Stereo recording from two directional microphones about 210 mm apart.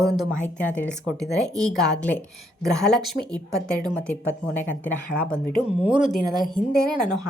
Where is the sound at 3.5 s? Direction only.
15° right (ahead or behind).